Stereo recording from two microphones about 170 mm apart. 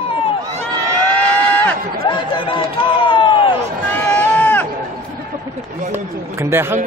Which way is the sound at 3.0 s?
30° left (ahead or behind).